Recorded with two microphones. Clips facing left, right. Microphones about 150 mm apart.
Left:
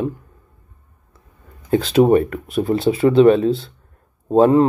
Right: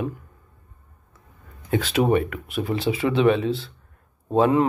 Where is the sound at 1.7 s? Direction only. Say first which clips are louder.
Left 7 dB; 30° left (ahead or behind).